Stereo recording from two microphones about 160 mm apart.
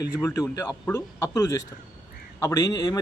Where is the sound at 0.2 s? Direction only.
20° left (ahead or behind).